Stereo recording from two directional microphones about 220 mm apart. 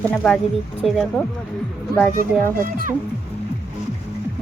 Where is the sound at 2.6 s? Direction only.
40° right (ahead or behind).